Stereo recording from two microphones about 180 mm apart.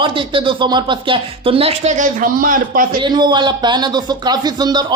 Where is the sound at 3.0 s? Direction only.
25° right (ahead or behind).